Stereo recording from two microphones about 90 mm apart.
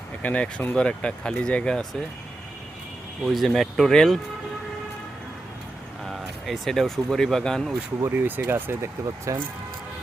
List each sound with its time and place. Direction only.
0.2 s speech: 15° left (ahead or behind)
3.2 s speech: centre (ahead or behind)
6.1 s speech: centre (ahead or behind)
8.0 s speech: 25° right (ahead or behind)